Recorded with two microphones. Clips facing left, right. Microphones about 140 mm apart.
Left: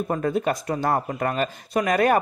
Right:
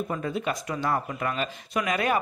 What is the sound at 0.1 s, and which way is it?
Speech, 45° left (ahead or behind).